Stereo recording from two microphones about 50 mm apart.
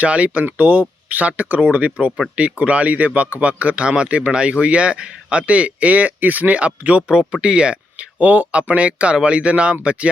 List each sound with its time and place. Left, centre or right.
0.0 s speech: right
7.1 s speech: centre